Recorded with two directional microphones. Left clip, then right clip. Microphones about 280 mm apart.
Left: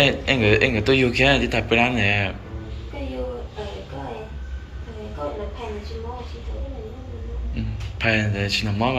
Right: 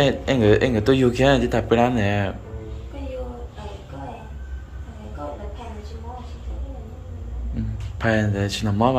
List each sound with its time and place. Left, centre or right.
0.0 s speech: right
7.5 s a man's voice: right